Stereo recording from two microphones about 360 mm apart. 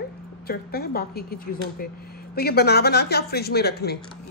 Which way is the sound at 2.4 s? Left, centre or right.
Left.